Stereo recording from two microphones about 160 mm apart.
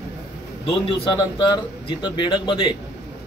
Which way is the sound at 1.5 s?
30° left (ahead or behind).